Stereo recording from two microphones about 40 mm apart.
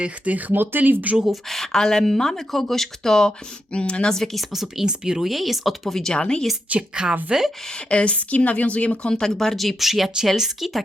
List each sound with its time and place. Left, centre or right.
0.3 s speech: right
0.6 s speech: right
1.3 s speech: centre
3.7 s speech: left
4.1 s speech: centre
4.5 s speech: centre
5.3 s speech: centre
5.9 s speech: centre
6.7 s a woman's voice: right
7.3 s speech: centre
7.9 s a woman's voice: left
9.0 s speech: centre